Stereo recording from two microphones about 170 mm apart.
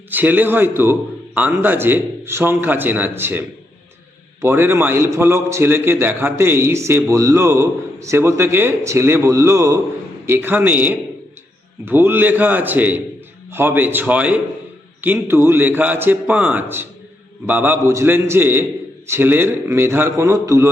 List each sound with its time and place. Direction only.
0.1 s a man's voice: 10° right (ahead or behind)